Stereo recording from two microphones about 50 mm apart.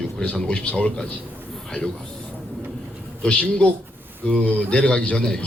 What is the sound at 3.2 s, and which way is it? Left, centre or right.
Speech, left.